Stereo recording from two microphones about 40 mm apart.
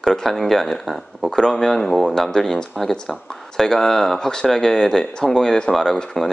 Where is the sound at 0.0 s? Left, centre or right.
Centre.